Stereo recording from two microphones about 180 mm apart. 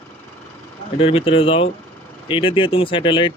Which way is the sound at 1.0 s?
30° left (ahead or behind).